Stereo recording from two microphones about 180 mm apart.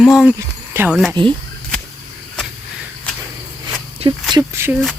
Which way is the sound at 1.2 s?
25° right (ahead or behind).